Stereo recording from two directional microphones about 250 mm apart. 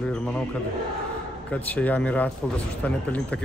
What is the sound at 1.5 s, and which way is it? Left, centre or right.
Speech, centre.